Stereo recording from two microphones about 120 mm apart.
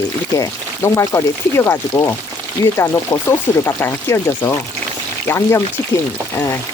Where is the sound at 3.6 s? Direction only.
20° left (ahead or behind).